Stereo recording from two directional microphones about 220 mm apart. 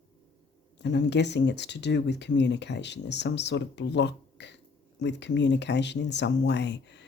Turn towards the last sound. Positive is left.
turn(degrees=50)  # may be behind; listen again after turning